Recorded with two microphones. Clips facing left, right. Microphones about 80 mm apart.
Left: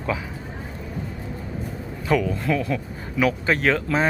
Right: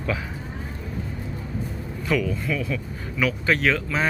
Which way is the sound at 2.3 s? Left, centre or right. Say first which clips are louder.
Left 3 dB; left.